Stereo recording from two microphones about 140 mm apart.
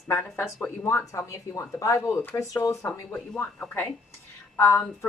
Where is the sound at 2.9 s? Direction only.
10° left (ahead or behind).